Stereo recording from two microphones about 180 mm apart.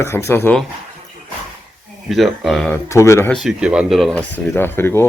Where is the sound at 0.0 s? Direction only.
15° left (ahead or behind).